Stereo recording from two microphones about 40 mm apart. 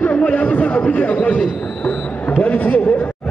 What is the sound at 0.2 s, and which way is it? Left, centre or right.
Chatter, left.